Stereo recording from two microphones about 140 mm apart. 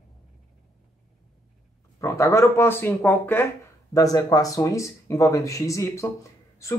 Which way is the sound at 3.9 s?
25° left (ahead or behind).